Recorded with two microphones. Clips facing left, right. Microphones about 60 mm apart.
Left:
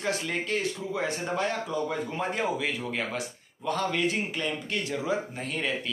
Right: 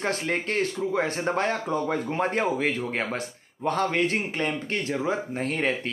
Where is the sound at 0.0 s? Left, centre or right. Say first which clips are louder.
Right 3 dB; right.